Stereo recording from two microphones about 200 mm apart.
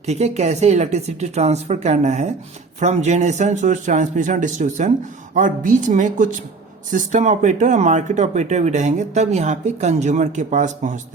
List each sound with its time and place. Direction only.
0.0 s speech: 35° right (ahead or behind)